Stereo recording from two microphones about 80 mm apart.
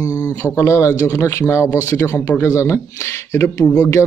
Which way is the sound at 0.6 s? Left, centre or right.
Left.